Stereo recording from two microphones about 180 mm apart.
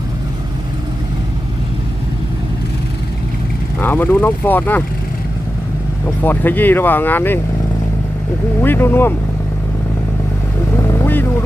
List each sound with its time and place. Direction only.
3.8 s speech: 10° left (ahead or behind)
6.1 s speech: 10° left (ahead or behind)
8.6 s speech: 10° left (ahead or behind)
10.8 s vehicle: 15° left (ahead or behind)